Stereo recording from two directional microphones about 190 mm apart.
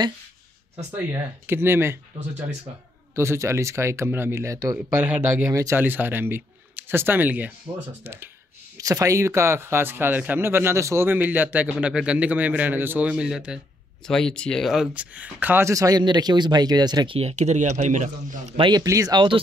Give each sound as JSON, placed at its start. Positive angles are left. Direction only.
{"t": 0.9, "sound": "speech", "side_deg": -10}
{"t": 18.7, "sound": "speech", "side_deg": -20}